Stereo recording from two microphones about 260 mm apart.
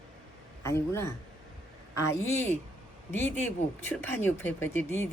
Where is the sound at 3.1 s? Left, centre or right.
Centre.